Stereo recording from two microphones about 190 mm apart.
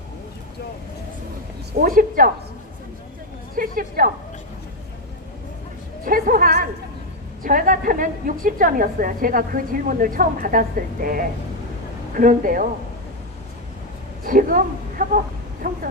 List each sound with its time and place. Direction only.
1.7 s a woman's voice: 50° right (ahead or behind)
3.5 s a woman's voice: 50° right (ahead or behind)
6.1 s a woman's voice: 50° right (ahead or behind)
14.3 s a woman's voice: 45° right (ahead or behind)